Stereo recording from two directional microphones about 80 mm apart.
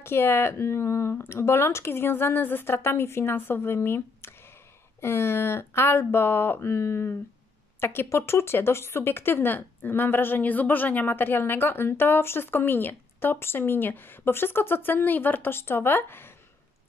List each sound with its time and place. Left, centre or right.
0.0 s speech: left